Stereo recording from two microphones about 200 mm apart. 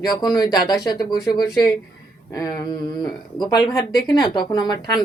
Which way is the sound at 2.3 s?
20° left (ahead or behind).